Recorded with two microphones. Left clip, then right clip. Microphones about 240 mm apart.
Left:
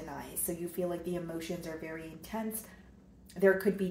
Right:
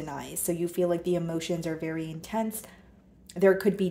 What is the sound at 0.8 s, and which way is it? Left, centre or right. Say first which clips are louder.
Speech: right 9 dB; right.